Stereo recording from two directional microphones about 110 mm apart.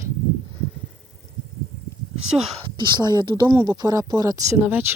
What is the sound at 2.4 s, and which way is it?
Speech, 65° right (ahead or behind).